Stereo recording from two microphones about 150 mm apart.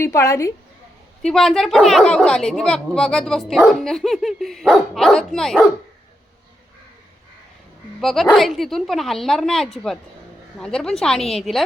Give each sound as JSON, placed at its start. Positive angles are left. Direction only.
{"t": 0.0, "sound": "a woman's voice", "side_deg": 20}
{"t": 1.2, "sound": "speech", "side_deg": 5}
{"t": 8.0, "sound": "speech", "side_deg": 0}